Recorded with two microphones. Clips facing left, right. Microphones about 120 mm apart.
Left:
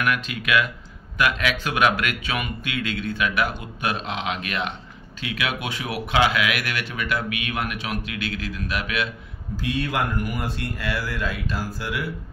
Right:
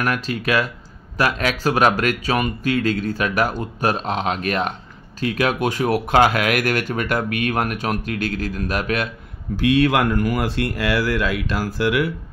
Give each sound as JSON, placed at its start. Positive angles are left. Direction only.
{"t": 0.0, "sound": "speech", "side_deg": -35}
{"t": 9.6, "sound": "a man's voice", "side_deg": -75}